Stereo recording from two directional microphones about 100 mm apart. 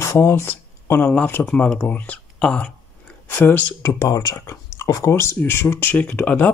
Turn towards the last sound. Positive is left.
turn(degrees=15)  # may be behind; listen again after turning